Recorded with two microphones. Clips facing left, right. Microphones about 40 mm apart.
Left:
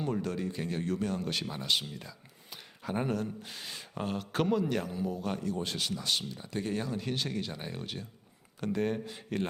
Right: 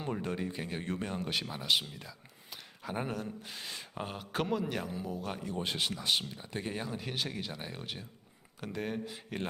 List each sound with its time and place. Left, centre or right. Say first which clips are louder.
0.0 s speech: left 3 dB; right; by 5.4 s centre
5.4 s speech: left 1 dB; right; by 9.5 s centre